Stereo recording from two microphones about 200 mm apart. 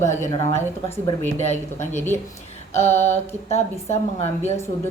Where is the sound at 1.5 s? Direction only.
35° left (ahead or behind).